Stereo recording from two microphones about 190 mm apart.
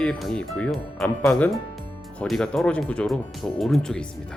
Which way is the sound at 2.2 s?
5° left (ahead or behind).